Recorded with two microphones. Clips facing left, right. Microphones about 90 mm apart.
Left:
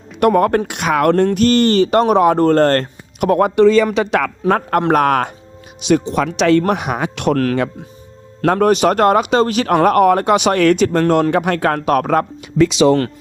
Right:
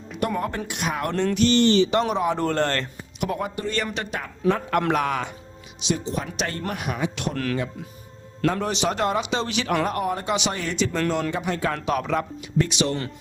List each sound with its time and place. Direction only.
0.2 s speech: 70° left (ahead or behind)
1.1 s speech: 50° left (ahead or behind)
2.4 s speech: 40° left (ahead or behind); by 4.3 s 90° left
4.4 s speech: 55° left (ahead or behind)
8.4 s speech: 55° left (ahead or behind)
12.6 s speech: 90° left